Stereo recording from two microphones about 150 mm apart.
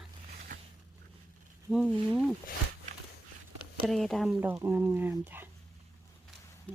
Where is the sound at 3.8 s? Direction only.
Centre (ahead or behind).